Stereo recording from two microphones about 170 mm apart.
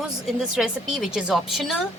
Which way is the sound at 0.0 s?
5° right (ahead or behind).